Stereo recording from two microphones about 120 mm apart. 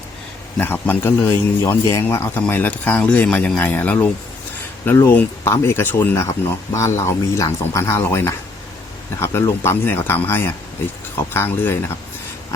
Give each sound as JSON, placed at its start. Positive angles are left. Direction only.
{"t": 0.5, "sound": "a man's voice", "side_deg": 15}